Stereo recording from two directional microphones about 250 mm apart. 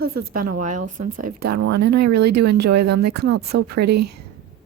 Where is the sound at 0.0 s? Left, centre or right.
Right.